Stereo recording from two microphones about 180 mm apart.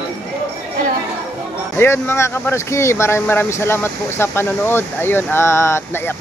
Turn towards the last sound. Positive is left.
turn(degrees=10)  # may be behind; listen again after turning